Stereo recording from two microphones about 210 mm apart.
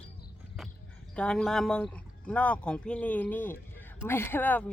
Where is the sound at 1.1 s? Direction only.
5° left (ahead or behind).